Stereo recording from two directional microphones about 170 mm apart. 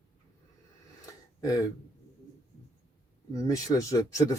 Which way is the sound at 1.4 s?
20° left (ahead or behind).